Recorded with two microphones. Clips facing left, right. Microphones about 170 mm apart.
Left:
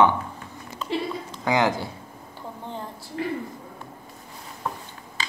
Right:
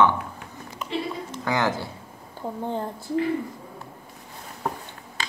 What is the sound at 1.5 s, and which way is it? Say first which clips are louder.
Speech: left 3 dB; 15° left (ahead or behind).